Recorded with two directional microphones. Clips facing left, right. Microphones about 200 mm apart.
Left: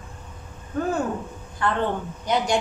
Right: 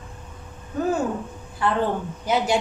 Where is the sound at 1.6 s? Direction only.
5° right (ahead or behind).